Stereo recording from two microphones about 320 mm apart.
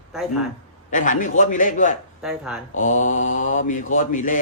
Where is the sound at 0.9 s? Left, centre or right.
Left.